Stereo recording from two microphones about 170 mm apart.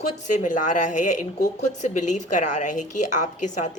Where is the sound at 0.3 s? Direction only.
50° left (ahead or behind).